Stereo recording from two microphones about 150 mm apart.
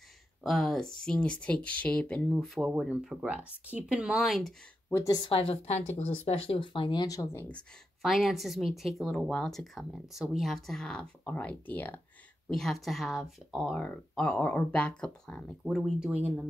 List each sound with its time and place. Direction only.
0.4 s a woman's voice: centre (ahead or behind)
4.9 s a woman's voice: 25° left (ahead or behind)
5.3 s speech: 40° left (ahead or behind); by 7.4 s 20° left (ahead or behind)
8.0 s a woman's voice: centre (ahead or behind)